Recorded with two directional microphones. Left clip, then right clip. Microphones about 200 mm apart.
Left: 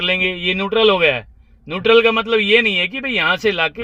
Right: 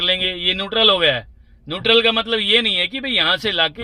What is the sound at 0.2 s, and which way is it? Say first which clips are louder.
A man's voice: left 1 dB; 25° left (ahead or behind).